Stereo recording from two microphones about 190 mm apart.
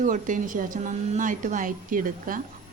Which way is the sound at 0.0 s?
40° right (ahead or behind).